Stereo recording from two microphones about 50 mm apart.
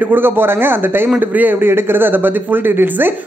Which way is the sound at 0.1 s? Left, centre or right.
Right.